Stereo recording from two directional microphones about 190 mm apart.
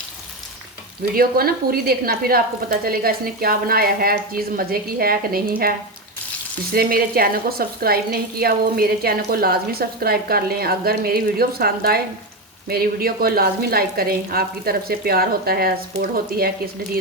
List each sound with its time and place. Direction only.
1.1 s speech: 50° right (ahead or behind)
6.7 s speech: 50° right (ahead or behind)